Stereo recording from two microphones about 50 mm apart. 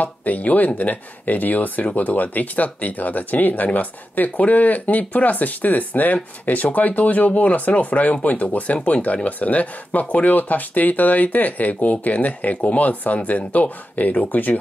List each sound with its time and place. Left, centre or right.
0.0 s speech: left